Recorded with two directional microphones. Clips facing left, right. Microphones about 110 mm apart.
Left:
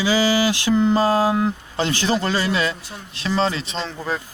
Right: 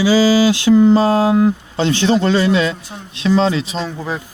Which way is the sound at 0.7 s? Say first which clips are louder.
Right 6 dB; 15° right (ahead or behind).